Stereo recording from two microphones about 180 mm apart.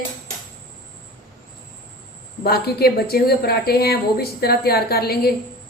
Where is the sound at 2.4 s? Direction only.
60° left (ahead or behind).